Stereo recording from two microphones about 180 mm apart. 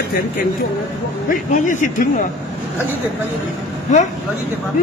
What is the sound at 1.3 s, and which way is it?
A man's voice, 45° left (ahead or behind).